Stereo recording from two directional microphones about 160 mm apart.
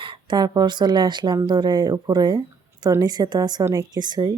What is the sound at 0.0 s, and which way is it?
Speech, 25° right (ahead or behind).